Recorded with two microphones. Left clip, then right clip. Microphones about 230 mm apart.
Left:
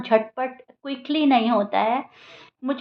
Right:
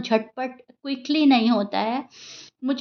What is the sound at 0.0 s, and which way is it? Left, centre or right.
A woman's voice, right.